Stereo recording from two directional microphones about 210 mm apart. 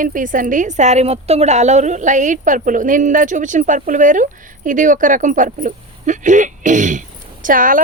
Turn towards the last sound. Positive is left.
turn(degrees=-40)  # may be behind; listen again after turning